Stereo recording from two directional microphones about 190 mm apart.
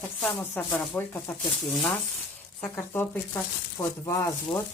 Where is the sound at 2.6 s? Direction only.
10° left (ahead or behind).